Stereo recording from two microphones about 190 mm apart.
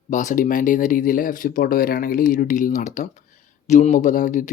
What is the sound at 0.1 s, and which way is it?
Speech, 40° left (ahead or behind).